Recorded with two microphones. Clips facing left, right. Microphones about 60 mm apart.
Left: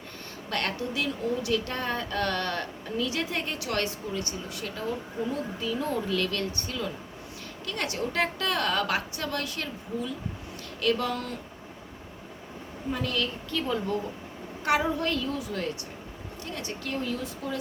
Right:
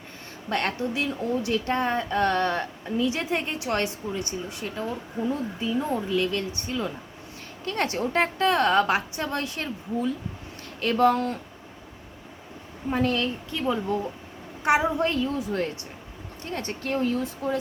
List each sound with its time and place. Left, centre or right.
0.5 s a woman's voice: right
12.9 s a woman's voice: right
13.5 s a woman's voice: centre; by 17.6 s right